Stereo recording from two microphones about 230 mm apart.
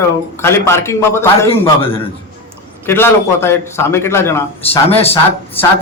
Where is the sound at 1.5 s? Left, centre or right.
Left.